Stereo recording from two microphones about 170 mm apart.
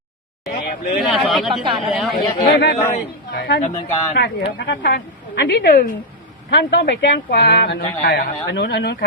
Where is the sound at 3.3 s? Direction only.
70° left (ahead or behind).